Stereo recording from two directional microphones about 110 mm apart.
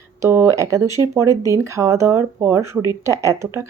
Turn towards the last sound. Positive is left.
turn(degrees=-25)  # may be behind; listen again after turning